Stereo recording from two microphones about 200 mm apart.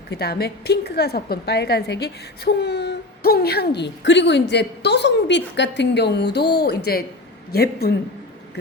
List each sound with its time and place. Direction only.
0.1 s a woman's voice: 55° left (ahead or behind)